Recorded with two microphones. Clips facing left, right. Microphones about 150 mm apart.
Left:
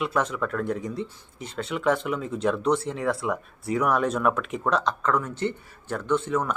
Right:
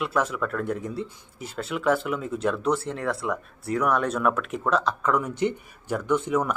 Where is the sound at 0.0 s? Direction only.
Centre (ahead or behind).